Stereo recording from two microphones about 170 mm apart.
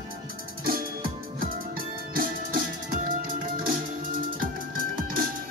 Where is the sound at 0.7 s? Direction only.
60° right (ahead or behind).